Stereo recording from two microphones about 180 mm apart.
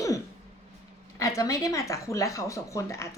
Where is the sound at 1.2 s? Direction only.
20° left (ahead or behind).